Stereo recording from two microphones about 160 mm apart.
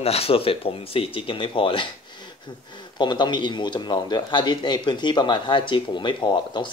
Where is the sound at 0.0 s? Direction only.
40° left (ahead or behind).